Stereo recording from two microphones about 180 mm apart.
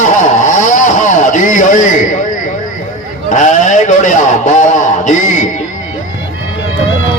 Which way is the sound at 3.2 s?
45° left (ahead or behind).